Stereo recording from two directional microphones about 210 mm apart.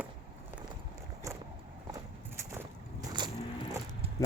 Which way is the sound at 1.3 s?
15° right (ahead or behind).